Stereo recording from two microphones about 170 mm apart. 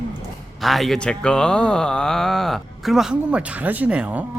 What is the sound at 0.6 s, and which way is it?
Speech, centre (ahead or behind).